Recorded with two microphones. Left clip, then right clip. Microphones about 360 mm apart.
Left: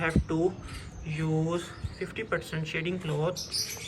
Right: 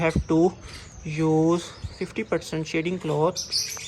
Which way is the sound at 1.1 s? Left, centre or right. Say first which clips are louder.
Right 10 dB; centre.